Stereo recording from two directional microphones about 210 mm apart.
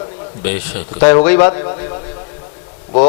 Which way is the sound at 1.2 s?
15° left (ahead or behind).